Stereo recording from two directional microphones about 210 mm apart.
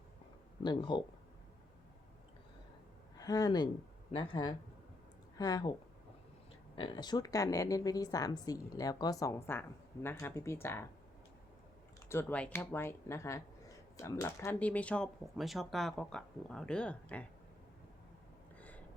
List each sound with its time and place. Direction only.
0.6 s speech: 20° left (ahead or behind)
3.2 s speech: 15° left (ahead or behind)
6.7 s speech: 20° left (ahead or behind)
12.0 s speech: 10° left (ahead or behind)